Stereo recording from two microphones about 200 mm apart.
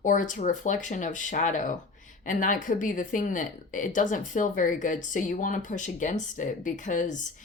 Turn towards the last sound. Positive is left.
turn(degrees=40)  # may be behind; listen again after turning